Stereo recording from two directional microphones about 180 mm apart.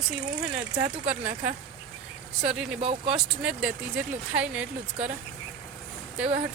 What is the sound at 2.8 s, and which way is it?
Speech, 30° right (ahead or behind).